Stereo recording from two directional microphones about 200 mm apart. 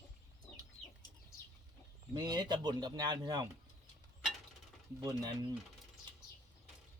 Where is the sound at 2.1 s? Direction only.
20° right (ahead or behind).